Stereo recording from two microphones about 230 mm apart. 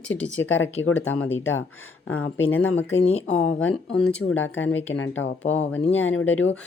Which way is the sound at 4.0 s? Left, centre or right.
Centre.